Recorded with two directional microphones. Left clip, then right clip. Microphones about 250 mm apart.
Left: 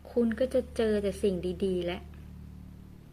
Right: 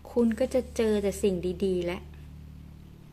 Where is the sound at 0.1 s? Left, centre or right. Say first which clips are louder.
Right 2 dB; centre.